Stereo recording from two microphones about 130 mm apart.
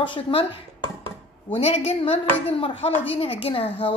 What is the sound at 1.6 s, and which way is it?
Speech, 50° left (ahead or behind).